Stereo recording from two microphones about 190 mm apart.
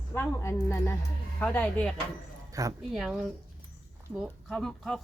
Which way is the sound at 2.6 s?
15° right (ahead or behind).